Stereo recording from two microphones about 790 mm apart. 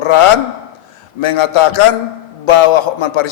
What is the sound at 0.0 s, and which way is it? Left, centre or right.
A man's voice, left.